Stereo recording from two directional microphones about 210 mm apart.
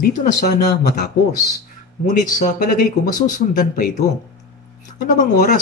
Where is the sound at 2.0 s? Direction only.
35° left (ahead or behind).